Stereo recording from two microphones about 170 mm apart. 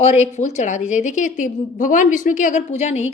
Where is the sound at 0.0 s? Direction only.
40° left (ahead or behind).